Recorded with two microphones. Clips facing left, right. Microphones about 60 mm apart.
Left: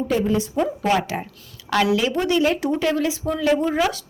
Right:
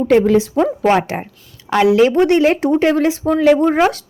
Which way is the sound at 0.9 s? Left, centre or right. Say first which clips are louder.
Right 6 dB; right.